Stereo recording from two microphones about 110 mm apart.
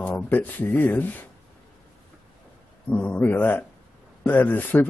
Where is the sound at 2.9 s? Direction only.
15° left (ahead or behind).